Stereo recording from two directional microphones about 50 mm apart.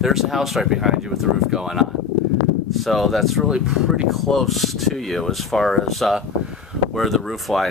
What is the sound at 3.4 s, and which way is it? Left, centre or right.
Speech, centre.